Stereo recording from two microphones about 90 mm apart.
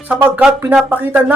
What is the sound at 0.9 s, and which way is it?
Speech, 20° right (ahead or behind).